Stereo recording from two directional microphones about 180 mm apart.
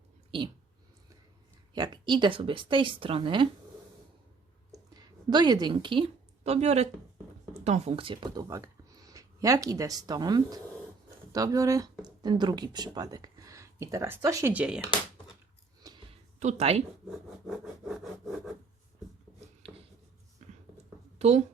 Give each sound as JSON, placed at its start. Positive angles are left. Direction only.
{"t": 0.3, "sound": "speech", "side_deg": -25}
{"t": 1.7, "sound": "speech", "side_deg": -25}
{"t": 4.7, "sound": "a sound", "side_deg": -25}
{"t": 7.5, "sound": "speech", "side_deg": -40}
{"t": 16.4, "sound": "speech", "side_deg": -40}
{"t": 17.1, "sound": "wood", "side_deg": 0}
{"t": 21.2, "sound": "speech", "side_deg": -35}